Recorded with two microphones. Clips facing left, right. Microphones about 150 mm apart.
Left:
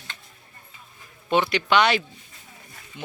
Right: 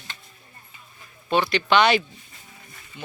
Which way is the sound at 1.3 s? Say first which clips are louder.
Even; 15° left (ahead or behind).